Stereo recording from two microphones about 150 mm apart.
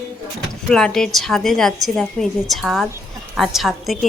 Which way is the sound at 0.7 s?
5° left (ahead or behind).